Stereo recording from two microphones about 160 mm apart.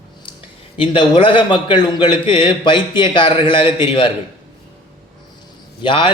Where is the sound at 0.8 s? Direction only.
30° left (ahead or behind).